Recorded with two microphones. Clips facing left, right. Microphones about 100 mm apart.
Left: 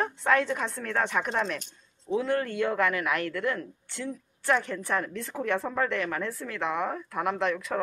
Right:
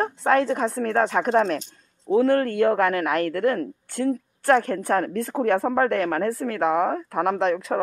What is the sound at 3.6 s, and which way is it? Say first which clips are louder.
A woman's voice: right 11 dB; 55° right (ahead or behind).